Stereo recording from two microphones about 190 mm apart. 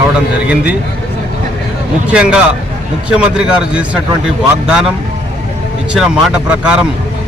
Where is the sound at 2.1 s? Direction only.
5° right (ahead or behind).